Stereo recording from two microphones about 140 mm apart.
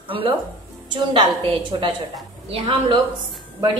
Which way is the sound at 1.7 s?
35° right (ahead or behind).